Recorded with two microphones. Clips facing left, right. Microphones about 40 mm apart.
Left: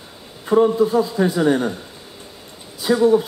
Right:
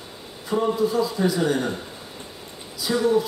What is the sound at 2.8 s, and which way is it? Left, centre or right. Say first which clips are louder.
Speech: left 5 dB; left.